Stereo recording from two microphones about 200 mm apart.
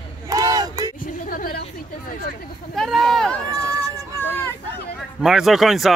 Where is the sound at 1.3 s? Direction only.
45° left (ahead or behind).